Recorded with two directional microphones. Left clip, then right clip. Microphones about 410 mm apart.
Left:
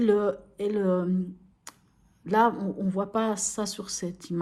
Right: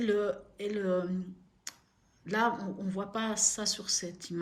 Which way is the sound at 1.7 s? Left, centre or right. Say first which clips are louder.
Right 1 dB; centre.